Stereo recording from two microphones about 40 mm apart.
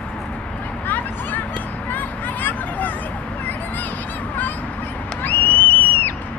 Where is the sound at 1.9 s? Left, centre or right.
Left.